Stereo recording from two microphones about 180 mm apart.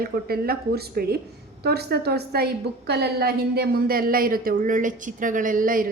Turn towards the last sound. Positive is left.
turn(degrees=-50)  # may be behind; listen again after turning